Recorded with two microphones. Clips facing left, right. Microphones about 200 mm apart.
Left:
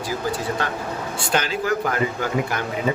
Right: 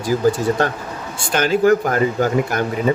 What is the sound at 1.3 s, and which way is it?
Speech, 50° right (ahead or behind).